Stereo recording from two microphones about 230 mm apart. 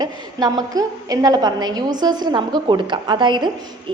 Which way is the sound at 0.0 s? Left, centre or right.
Centre.